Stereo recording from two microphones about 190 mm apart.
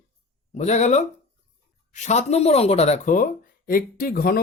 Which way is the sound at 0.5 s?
35° left (ahead or behind).